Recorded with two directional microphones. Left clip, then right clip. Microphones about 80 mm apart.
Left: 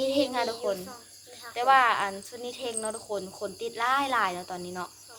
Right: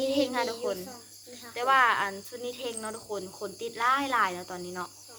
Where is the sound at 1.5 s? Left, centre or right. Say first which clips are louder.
Left 2 dB; left.